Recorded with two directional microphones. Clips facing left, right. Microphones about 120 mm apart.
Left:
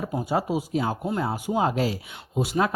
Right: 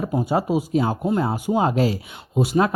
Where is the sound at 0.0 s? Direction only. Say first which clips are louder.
Right 4 dB; 35° right (ahead or behind).